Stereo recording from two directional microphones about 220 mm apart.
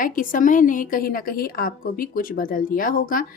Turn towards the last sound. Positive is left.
turn(degrees=40)  # may be behind; listen again after turning